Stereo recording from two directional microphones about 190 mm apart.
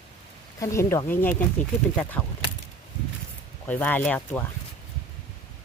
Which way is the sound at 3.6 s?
10° left (ahead or behind).